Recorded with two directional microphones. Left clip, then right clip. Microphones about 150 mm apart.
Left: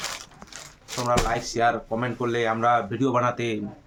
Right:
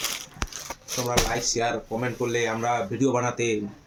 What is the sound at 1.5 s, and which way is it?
Speech, centre (ahead or behind).